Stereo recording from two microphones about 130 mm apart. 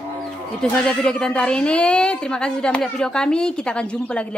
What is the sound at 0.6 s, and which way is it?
A woman's voice, 5° left (ahead or behind).